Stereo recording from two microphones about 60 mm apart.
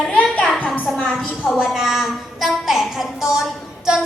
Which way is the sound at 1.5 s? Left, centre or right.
Centre.